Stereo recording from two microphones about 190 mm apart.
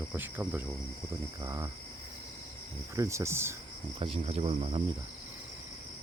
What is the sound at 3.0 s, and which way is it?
Speech, 15° right (ahead or behind).